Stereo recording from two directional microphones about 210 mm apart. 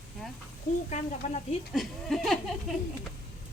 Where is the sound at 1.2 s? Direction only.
35° left (ahead or behind).